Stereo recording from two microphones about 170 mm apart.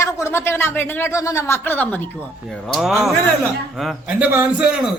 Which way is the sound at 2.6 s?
Centre (ahead or behind).